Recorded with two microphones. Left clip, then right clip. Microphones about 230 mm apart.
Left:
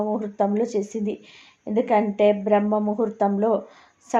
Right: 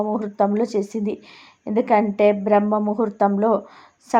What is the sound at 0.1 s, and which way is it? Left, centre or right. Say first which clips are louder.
Speech: right 3 dB; right.